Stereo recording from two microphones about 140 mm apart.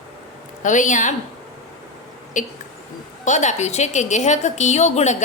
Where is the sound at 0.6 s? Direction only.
65° left (ahead or behind).